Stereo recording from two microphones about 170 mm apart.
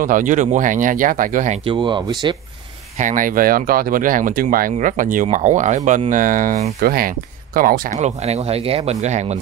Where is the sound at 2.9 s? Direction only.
50° right (ahead or behind).